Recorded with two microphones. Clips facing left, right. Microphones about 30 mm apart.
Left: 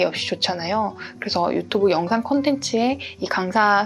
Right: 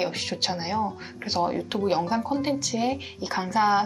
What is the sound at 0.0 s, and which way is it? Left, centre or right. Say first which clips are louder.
Speech: left 6 dB; left.